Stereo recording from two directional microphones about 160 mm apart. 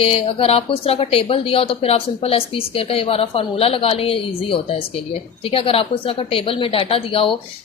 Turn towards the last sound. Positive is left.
turn(degrees=35)  # may be behind; listen again after turning